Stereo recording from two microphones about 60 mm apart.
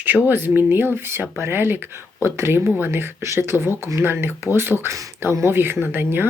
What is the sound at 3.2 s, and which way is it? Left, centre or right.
Speech, right.